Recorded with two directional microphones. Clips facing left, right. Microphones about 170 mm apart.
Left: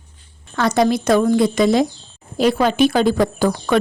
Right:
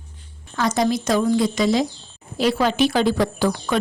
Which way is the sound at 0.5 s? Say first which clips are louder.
Left 4 dB; 65° left (ahead or behind).